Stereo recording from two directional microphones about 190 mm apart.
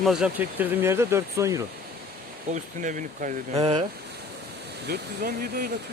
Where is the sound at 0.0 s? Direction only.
5° right (ahead or behind).